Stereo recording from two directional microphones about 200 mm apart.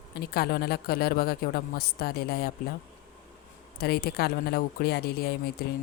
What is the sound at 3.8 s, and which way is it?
Speech, 50° left (ahead or behind).